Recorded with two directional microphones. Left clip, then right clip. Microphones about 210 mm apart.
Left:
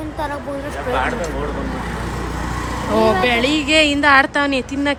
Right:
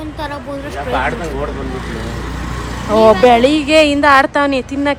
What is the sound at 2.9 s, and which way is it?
Speech, 10° left (ahead or behind).